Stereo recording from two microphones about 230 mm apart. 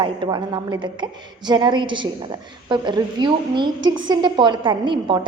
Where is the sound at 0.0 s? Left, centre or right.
Centre.